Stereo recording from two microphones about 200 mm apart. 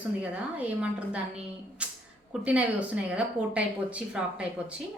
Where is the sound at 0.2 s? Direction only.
5° right (ahead or behind).